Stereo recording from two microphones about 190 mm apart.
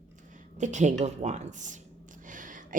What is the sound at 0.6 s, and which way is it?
Speech, 40° right (ahead or behind).